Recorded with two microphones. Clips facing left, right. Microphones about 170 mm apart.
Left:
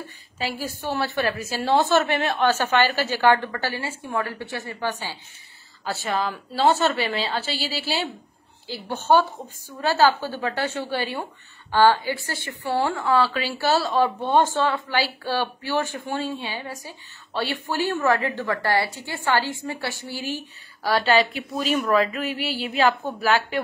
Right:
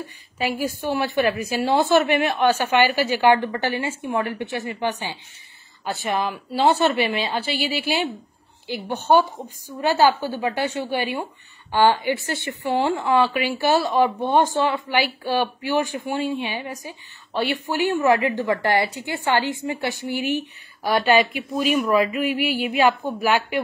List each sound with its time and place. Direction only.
0.5 s a woman's voice: 50° right (ahead or behind)
0.7 s a woman's voice: 15° right (ahead or behind)